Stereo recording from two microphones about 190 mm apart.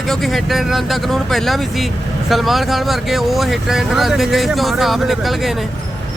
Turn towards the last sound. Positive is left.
turn(degrees=0)  # may be behind; listen again after turning